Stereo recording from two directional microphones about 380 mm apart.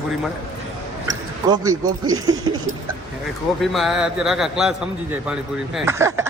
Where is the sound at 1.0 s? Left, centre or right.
Centre.